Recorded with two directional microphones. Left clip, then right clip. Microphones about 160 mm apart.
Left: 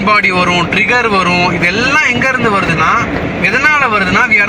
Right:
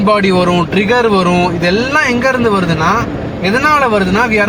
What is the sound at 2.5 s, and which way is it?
Speech, 30° right (ahead or behind).